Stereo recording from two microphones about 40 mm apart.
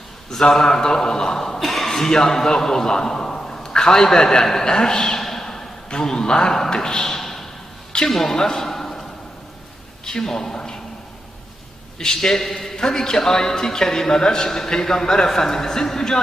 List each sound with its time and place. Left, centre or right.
0.3 s a man's voice: centre
1.5 s a man's voice: centre
5.2 s a sound: centre
6.0 s a man's voice: centre
7.9 s a sound: centre
10.1 s a man's voice: centre
11.9 s a man's voice: centre